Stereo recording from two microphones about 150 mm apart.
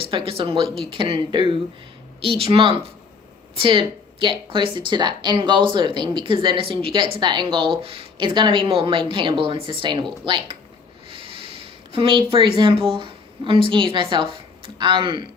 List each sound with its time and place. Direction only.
0.0 s speech: 35° right (ahead or behind)
11.9 s speech: 35° right (ahead or behind)